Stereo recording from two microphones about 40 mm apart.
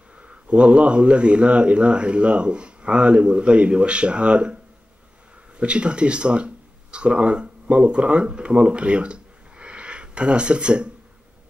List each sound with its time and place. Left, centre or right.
0.2 s speech: right
5.6 s speech: right